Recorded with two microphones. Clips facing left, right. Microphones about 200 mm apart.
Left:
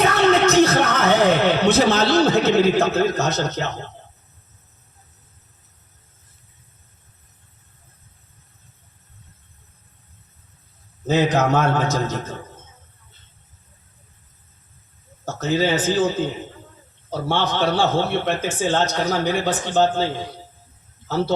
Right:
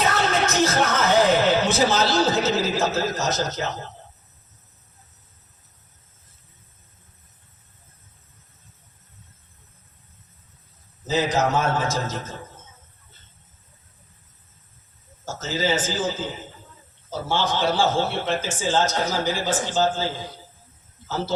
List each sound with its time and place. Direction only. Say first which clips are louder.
0.0 s music: left 6 dB; 60° left (ahead or behind)
11.0 s a man's voice: left 4 dB; 60° left (ahead or behind)
15.2 s a man's voice: left 6 dB; 60° left (ahead or behind)